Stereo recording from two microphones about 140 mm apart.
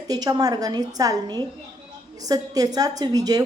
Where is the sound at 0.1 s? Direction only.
25° right (ahead or behind).